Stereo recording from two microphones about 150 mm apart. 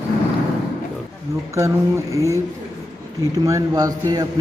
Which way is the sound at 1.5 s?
20° right (ahead or behind).